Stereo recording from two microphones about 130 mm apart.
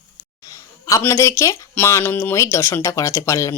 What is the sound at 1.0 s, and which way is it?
Speech, 20° left (ahead or behind).